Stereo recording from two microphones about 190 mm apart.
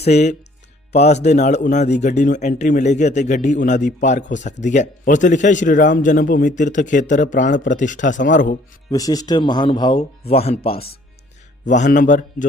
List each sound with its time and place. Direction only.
0.0 s a man's voice: 35° left (ahead or behind)
8.9 s speech: 20° left (ahead or behind)
11.7 s a man's voice: 40° left (ahead or behind)